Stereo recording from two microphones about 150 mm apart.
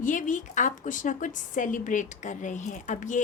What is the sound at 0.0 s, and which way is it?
A woman's voice, 60° left (ahead or behind).